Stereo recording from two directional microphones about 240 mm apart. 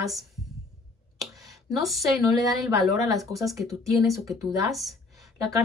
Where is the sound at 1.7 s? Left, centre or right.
Centre.